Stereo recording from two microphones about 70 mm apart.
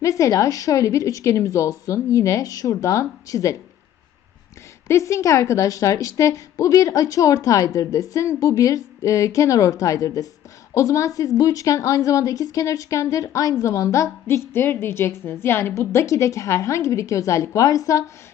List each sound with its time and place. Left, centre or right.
0.0 s a woman's voice: left
4.9 s a woman's voice: left
14.3 s a woman's voice: left